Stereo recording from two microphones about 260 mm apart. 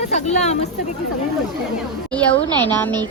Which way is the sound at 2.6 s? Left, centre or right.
Centre.